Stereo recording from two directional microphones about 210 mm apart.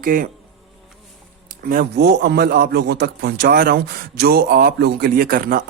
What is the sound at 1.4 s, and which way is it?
Speech, 45° right (ahead or behind).